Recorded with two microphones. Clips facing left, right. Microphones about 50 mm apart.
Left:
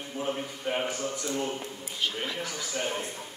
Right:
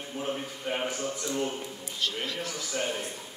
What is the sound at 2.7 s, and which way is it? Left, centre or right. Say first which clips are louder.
Speech: right 1 dB; centre.